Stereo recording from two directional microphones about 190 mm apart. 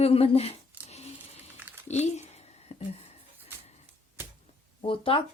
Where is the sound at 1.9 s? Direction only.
35° left (ahead or behind).